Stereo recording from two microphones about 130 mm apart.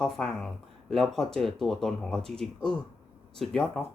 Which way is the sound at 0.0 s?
5° left (ahead or behind).